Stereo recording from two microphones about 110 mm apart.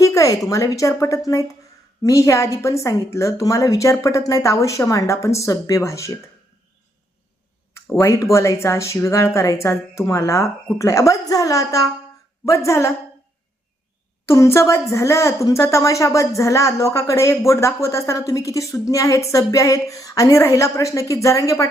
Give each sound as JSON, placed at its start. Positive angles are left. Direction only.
{"t": 0.0, "sound": "a sound", "side_deg": 30}
{"t": 0.4, "sound": "a woman's voice", "side_deg": 30}
{"t": 7.9, "sound": "a woman's voice", "side_deg": 25}
{"t": 14.3, "sound": "a woman's voice", "side_deg": 25}